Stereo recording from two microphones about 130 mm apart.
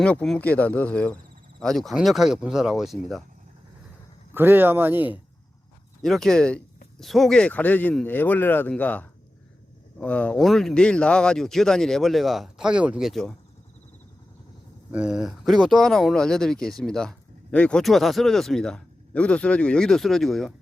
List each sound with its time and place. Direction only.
0.0 s speech: 10° left (ahead or behind)
4.4 s speech: 15° right (ahead or behind)
6.0 s speech: 5° left (ahead or behind)
14.9 s speech: 5° right (ahead or behind)